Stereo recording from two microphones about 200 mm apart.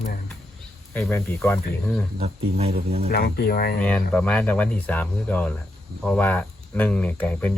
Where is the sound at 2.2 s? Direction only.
30° right (ahead or behind).